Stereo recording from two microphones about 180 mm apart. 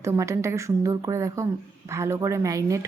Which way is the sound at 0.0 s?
15° right (ahead or behind).